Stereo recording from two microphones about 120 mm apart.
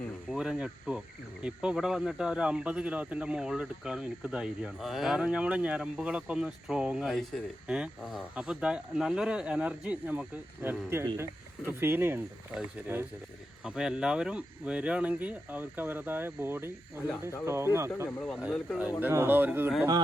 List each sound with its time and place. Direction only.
0.3 s cricket: 5° right (ahead or behind)
11.2 s speech: 20° right (ahead or behind)
12.9 s cricket: 20° right (ahead or behind)
13.7 s cricket: 5° right (ahead or behind)
17.4 s speech: 20° right (ahead or behind)
18.8 s cricket: 15° right (ahead or behind)
19.1 s speech: 20° right (ahead or behind)